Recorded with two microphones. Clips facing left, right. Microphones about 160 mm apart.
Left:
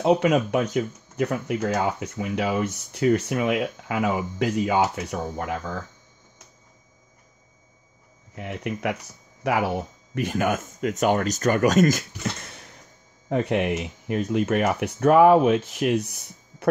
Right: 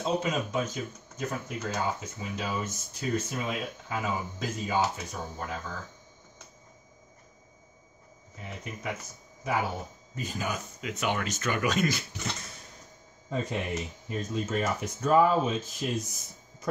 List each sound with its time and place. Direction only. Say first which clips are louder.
0.0 s speech: left 9 dB; 70° left (ahead or behind)
8.4 s speech: left 11 dB; 70° left (ahead or behind); by 12.1 s 45° left (ahead or behind)
13.3 s speech: left 9 dB; 70° left (ahead or behind)